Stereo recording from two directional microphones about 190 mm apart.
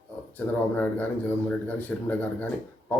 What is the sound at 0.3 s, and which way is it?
Speech, 10° left (ahead or behind).